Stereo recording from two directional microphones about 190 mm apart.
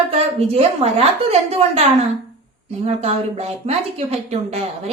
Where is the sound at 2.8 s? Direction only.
30° right (ahead or behind).